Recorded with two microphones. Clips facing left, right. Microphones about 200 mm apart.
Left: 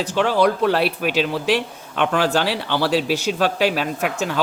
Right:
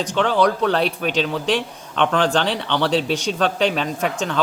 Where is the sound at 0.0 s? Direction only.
5° left (ahead or behind).